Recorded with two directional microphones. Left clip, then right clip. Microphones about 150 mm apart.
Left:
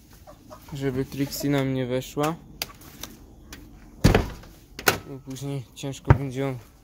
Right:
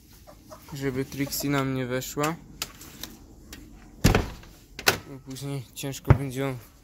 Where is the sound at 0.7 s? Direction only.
20° left (ahead or behind).